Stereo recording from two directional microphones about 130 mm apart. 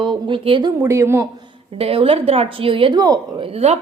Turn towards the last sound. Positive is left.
turn(degrees=-55)  # may be behind; listen again after turning